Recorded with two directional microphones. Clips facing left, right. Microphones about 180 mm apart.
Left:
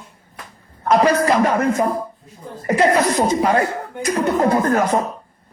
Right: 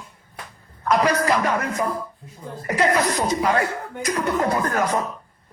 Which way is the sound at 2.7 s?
30° left (ahead or behind).